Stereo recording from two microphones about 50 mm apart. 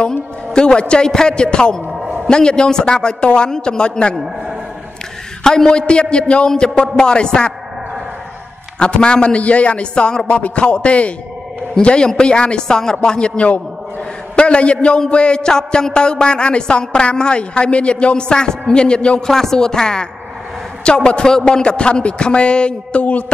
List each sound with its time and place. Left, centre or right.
0.0 s a man's voice: centre
5.4 s a man's voice: centre
8.7 s a man's voice: centre
19.2 s a man's voice: centre; by 23.2 s left